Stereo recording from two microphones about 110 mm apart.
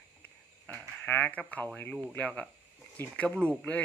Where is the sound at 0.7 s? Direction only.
10° left (ahead or behind).